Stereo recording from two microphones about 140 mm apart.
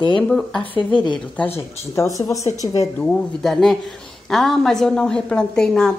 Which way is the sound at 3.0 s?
5° left (ahead or behind).